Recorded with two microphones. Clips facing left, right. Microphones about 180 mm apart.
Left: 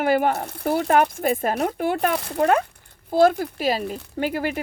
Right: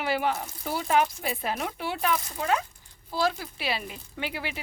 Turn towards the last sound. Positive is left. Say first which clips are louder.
# left 10 dB
turn(degrees=45)  # may be behind; listen again after turning